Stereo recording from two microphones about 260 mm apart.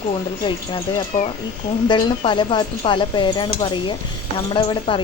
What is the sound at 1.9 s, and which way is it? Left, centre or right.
Speech, centre.